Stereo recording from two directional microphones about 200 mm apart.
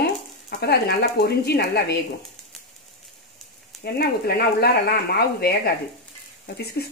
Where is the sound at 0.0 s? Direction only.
55° left (ahead or behind).